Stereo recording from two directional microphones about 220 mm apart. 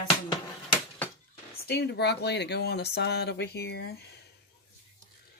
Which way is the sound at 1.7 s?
50° left (ahead or behind).